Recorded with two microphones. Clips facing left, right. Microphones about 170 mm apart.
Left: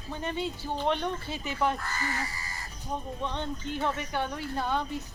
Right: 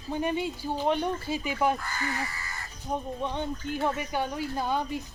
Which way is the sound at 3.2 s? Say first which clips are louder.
Right 2 dB; 10° right (ahead or behind).